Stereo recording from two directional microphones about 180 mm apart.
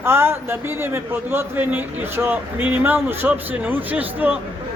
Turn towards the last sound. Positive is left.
turn(degrees=-10)  # may be behind; listen again after turning